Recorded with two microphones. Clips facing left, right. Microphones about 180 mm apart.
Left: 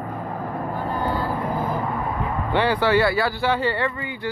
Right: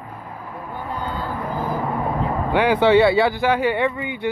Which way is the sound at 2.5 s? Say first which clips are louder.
Right 4 dB; 15° right (ahead or behind).